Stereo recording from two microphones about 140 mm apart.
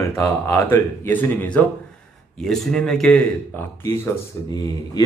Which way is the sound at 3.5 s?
20° left (ahead or behind).